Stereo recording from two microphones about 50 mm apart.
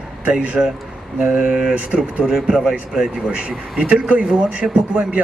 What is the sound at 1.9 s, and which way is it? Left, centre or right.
Speech, centre.